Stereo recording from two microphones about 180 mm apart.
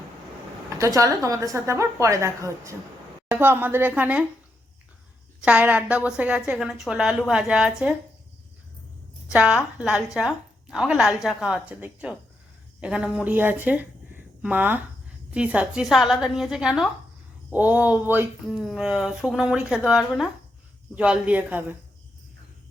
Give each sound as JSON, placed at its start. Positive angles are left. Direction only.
{"t": 0.8, "sound": "a woman's voice", "side_deg": -15}
{"t": 5.4, "sound": "speech", "side_deg": -5}
{"t": 9.3, "sound": "a woman's voice", "side_deg": -5}